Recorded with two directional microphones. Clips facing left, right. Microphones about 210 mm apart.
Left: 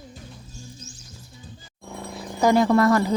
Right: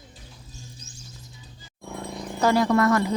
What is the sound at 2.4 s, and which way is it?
Speech, 20° left (ahead or behind).